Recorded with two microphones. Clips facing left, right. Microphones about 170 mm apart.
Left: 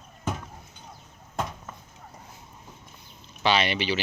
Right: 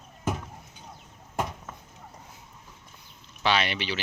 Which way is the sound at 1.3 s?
10° right (ahead or behind).